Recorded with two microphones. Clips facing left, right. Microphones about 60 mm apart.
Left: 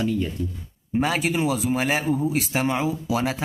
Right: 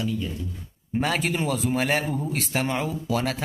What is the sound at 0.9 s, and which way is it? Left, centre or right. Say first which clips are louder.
A man's voice: left 2 dB; centre.